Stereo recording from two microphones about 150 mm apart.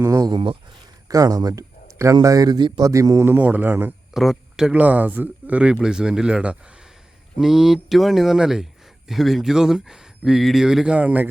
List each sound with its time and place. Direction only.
0.0 s speech: 25° right (ahead or behind)
4.1 s speech: centre (ahead or behind)